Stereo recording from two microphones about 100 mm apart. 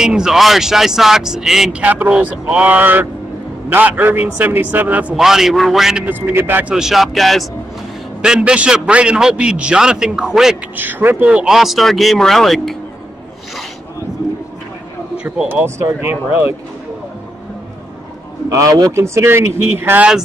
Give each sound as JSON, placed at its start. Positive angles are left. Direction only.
{"t": 0.0, "sound": "speech", "side_deg": -5}
{"t": 5.2, "sound": "speech", "side_deg": -5}
{"t": 6.0, "sound": "speech", "side_deg": -20}
{"t": 6.7, "sound": "a man's voice", "side_deg": -5}
{"t": 10.8, "sound": "speech", "side_deg": -20}
{"t": 11.2, "sound": "speech", "side_deg": -5}
{"t": 15.2, "sound": "speech", "side_deg": -15}
{"t": 18.5, "sound": "speech", "side_deg": -35}